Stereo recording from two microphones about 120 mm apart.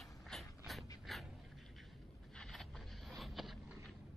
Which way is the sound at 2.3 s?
Centre (ahead or behind).